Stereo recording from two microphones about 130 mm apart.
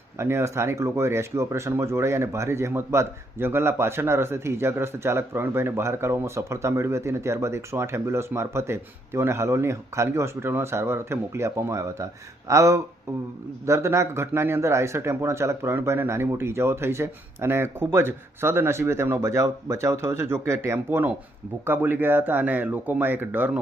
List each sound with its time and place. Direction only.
0.2 s speech: 20° right (ahead or behind)